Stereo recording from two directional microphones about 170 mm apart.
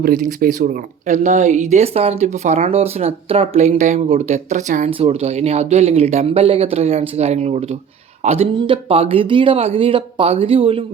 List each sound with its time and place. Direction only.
0.0 s speech: 55° right (ahead or behind)
4.9 s speech: 35° right (ahead or behind)